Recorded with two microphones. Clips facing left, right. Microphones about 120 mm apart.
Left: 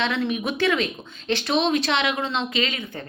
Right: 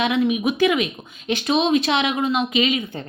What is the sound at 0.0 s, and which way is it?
Speech, 15° right (ahead or behind).